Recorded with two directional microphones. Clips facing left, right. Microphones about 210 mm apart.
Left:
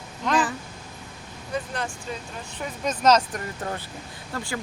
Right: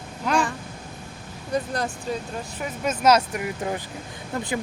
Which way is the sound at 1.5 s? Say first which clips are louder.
Right 4 dB; 40° right (ahead or behind).